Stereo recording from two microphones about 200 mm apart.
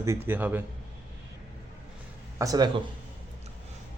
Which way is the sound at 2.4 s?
20° right (ahead or behind).